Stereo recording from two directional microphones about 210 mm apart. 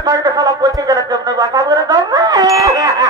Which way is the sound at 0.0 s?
20° right (ahead or behind).